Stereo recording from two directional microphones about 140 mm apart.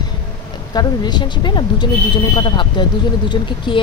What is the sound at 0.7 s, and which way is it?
Speech, 30° left (ahead or behind).